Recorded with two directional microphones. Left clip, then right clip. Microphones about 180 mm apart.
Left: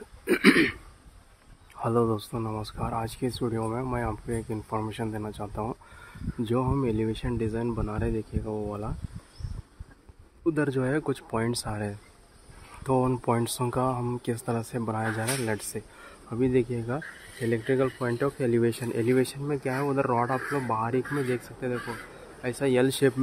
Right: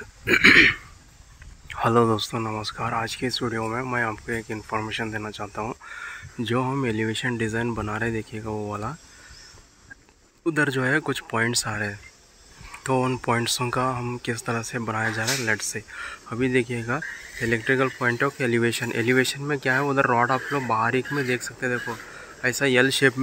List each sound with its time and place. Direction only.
0.3 s speech: 10° left (ahead or behind)
1.7 s speech: 10° right (ahead or behind)
10.4 s speech: 5° left (ahead or behind)